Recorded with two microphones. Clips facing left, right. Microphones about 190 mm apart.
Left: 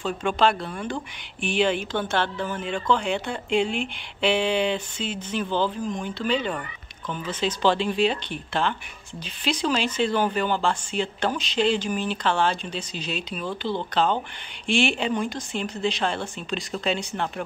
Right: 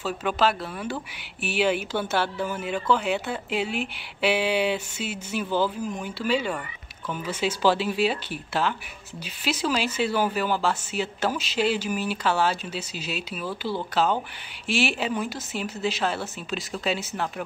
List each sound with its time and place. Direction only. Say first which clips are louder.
0.0 s speech: left 2 dB; 5° right (ahead or behind)